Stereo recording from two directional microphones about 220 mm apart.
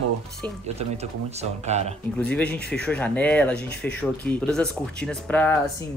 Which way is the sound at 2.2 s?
5° left (ahead or behind).